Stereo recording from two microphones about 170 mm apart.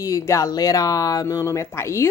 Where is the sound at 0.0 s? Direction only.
20° left (ahead or behind).